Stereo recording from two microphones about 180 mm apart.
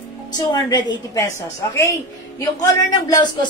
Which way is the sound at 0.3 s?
25° left (ahead or behind).